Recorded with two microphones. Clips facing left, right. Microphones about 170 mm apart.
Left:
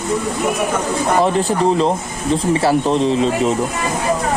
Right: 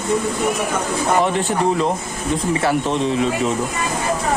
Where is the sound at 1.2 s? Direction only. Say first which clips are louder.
Left 3 dB; 30° left (ahead or behind).